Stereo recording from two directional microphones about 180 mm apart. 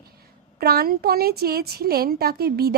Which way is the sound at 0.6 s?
60° right (ahead or behind).